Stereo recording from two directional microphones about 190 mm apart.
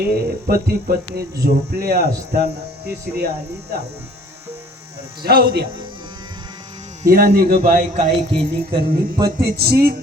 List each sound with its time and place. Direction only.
0.1 s speech: 55° right (ahead or behind)
5.2 s speech: 55° right (ahead or behind)
7.1 s speech: 50° right (ahead or behind)
7.9 s speech: 30° right (ahead or behind)
9.6 s speech: 55° right (ahead or behind)